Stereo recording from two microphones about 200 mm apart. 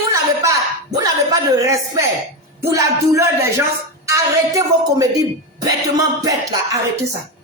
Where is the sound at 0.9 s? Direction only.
20° right (ahead or behind).